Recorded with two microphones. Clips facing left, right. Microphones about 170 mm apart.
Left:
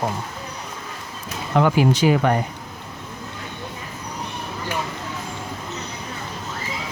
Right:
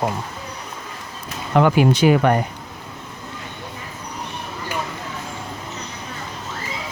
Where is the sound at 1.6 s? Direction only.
60° right (ahead or behind).